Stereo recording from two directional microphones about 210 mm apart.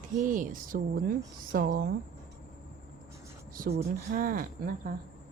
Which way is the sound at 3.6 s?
45° right (ahead or behind).